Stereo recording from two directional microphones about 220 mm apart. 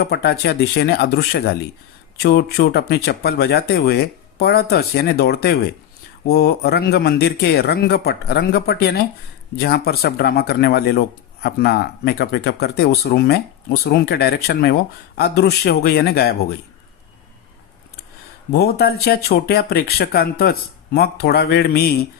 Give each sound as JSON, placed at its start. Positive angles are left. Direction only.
{"t": 0.0, "sound": "speech", "side_deg": 45}
{"t": 18.5, "sound": "speech", "side_deg": 45}